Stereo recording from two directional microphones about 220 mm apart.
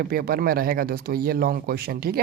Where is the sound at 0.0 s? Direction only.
45° right (ahead or behind).